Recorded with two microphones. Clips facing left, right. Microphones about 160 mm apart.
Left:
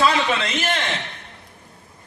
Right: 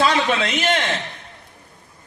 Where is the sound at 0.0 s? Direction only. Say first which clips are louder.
Right 1 dB; 60° right (ahead or behind).